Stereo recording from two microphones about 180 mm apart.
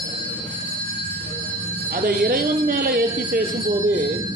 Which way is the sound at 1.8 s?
55° right (ahead or behind).